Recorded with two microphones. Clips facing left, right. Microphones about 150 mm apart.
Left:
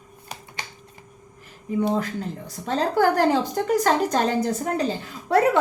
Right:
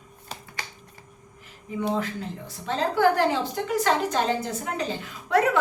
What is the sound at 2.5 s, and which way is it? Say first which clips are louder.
A woman's voice: left 3 dB; 40° left (ahead or behind).